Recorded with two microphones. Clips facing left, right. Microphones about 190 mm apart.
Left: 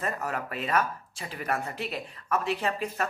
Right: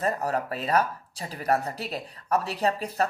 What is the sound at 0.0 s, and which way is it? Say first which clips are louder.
Speech: right 5 dB; 35° right (ahead or behind).